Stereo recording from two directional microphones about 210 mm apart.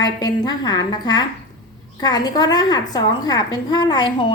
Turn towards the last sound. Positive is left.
turn(degrees=20)  # may be behind; listen again after turning